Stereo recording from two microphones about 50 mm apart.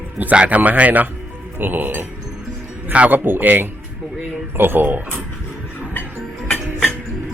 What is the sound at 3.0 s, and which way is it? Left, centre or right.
Speech, right.